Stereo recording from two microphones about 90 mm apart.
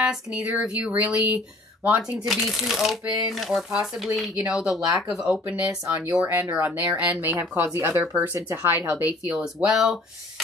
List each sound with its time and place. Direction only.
0.0 s speech: 10° right (ahead or behind)
1.1 s speech: 45° left (ahead or behind)
2.0 s speech: 10° right (ahead or behind)
6.2 s speech: 30° right (ahead or behind)
6.6 s speech: 20° right (ahead or behind)
9.3 s speech: 5° right (ahead or behind)